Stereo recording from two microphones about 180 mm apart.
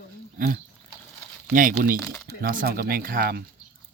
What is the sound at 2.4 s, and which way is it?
Speech, 55° right (ahead or behind).